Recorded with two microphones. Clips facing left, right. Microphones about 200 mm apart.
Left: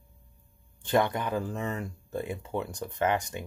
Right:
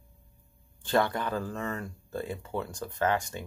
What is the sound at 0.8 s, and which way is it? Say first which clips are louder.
Speech: left 1 dB; 20° left (ahead or behind).